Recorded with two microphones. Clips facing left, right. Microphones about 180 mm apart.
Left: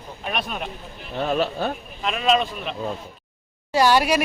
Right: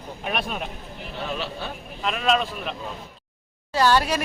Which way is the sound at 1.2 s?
45° left (ahead or behind).